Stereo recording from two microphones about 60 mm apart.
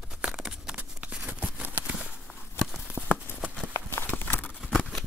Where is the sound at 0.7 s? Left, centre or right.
Right.